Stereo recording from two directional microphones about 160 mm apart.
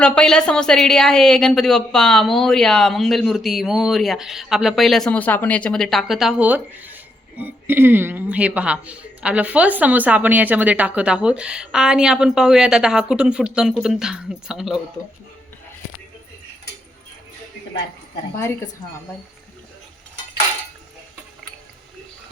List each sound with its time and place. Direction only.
0.0 s a woman's voice: 5° left (ahead or behind)
18.3 s speech: 20° left (ahead or behind)